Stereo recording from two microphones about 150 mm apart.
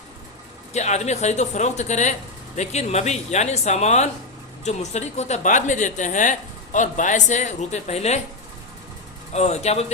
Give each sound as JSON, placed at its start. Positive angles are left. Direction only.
{"t": 0.7, "sound": "speech", "side_deg": 50}
{"t": 9.3, "sound": "speech", "side_deg": 45}